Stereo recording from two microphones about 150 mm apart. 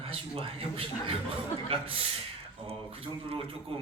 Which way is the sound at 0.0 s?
40° right (ahead or behind).